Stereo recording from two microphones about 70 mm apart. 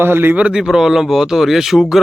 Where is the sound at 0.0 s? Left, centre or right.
Right.